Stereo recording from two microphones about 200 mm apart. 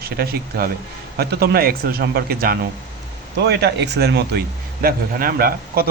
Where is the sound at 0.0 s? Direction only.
50° right (ahead or behind).